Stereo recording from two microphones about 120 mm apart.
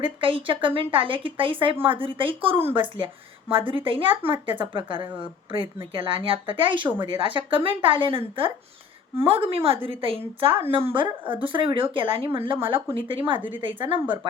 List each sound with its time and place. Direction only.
0.0 s speech: 45° right (ahead or behind)